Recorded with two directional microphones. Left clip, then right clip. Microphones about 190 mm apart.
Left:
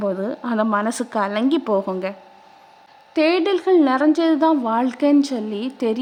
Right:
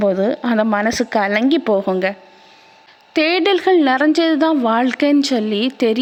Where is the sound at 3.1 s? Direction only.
15° right (ahead or behind).